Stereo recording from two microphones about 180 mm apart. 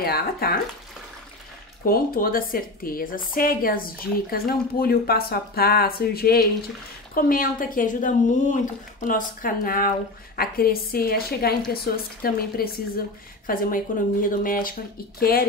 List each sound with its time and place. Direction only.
0.0 s a woman's voice: 60° left (ahead or behind)
1.9 s a woman's voice: 55° left (ahead or behind)